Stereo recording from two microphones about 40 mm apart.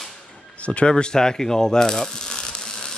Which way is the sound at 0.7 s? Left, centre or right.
Left.